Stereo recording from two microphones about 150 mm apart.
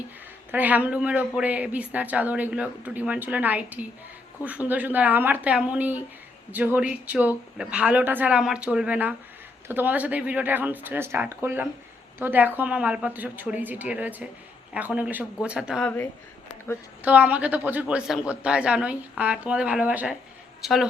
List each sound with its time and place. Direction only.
0.5 s speech: 10° right (ahead or behind)
15.8 s speech: 10° left (ahead or behind)
17.0 s a woman's voice: 10° right (ahead or behind)